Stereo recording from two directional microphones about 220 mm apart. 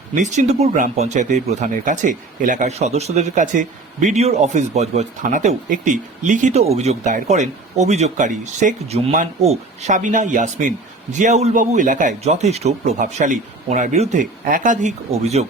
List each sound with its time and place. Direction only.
0.1 s speech: 35° right (ahead or behind)